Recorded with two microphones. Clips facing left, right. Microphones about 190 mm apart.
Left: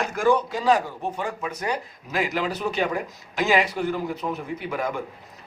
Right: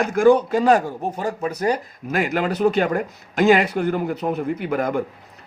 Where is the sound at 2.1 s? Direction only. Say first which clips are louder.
Right 4 dB; 55° right (ahead or behind).